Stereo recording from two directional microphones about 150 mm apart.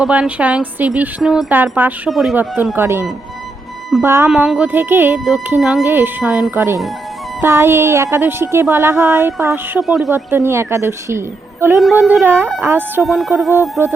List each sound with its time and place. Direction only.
0.0 s speech: 10° right (ahead or behind)
2.0 s music: centre (ahead or behind)
2.3 s speech: 10° right (ahead or behind)
4.0 s speech: 15° right (ahead or behind)
4.3 s speech: 5° right (ahead or behind)
5.5 s music: 5° right (ahead or behind)
5.8 s speech: 15° right (ahead or behind)
9.8 s music: centre (ahead or behind)
10.1 s speech: 15° right (ahead or behind)
11.8 s speech: 5° right (ahead or behind)
13.0 s music: centre (ahead or behind)